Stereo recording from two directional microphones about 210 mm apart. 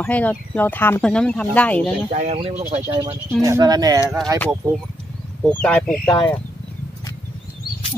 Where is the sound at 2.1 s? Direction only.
35° right (ahead or behind).